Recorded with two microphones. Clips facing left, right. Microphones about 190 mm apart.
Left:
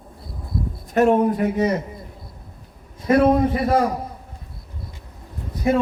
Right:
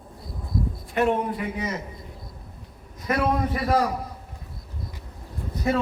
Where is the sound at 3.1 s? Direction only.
25° left (ahead or behind).